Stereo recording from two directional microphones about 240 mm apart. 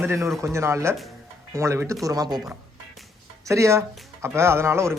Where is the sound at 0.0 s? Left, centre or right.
Centre.